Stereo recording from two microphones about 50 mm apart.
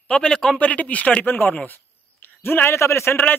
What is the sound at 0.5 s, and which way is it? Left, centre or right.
Speech, left.